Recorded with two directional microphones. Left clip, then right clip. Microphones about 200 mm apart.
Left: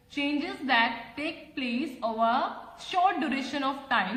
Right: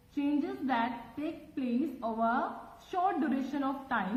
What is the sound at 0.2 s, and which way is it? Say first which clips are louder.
A woman's voice: left 2 dB; 15° left (ahead or behind).